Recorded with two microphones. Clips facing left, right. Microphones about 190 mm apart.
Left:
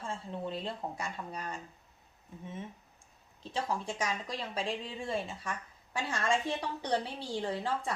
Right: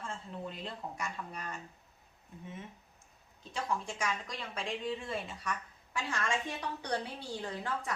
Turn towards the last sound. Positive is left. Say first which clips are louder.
# left 4 dB
turn(degrees=30)  # may be behind; listen again after turning